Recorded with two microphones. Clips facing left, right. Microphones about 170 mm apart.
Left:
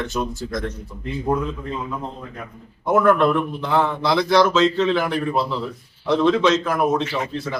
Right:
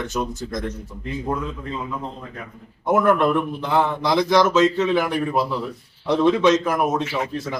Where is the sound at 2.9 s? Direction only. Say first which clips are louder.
Left 1 dB; 10° right (ahead or behind).